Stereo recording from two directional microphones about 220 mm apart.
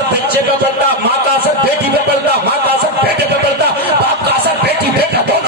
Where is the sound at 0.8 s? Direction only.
50° right (ahead or behind).